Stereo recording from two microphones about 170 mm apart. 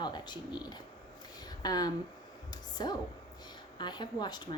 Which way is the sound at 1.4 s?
25° left (ahead or behind).